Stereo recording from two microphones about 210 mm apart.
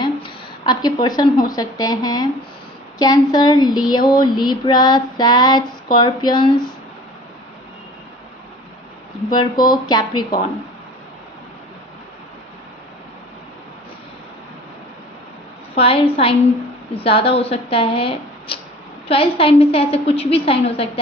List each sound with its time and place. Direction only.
0.0 s a sound: 20° left (ahead or behind)
1.0 s female singing: 20° left (ahead or behind)
1.5 s speech: 15° left (ahead or behind)
3.0 s female singing: 20° left (ahead or behind)
9.3 s female singing: 20° left (ahead or behind)
15.7 s female singing: 25° left (ahead or behind)